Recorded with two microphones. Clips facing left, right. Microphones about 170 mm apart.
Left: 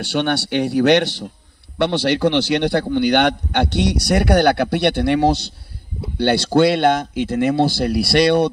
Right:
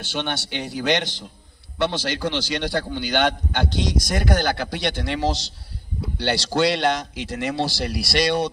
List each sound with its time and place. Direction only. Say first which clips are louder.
0.0 s a man's voice: left 8 dB; 65° left (ahead or behind)